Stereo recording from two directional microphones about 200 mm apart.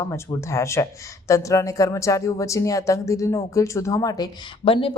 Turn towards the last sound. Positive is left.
turn(degrees=25)  # may be behind; listen again after turning